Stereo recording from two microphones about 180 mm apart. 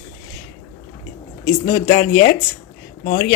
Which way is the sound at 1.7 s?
45° left (ahead or behind).